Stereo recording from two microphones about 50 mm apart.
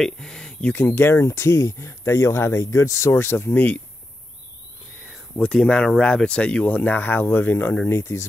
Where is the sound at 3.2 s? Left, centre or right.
Left.